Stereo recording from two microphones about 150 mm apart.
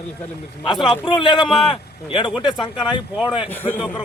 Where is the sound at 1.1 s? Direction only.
35° left (ahead or behind).